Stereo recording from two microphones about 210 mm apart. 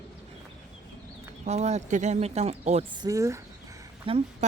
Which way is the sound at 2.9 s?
15° right (ahead or behind).